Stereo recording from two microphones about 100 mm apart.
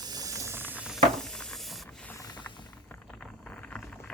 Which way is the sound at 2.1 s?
40° left (ahead or behind).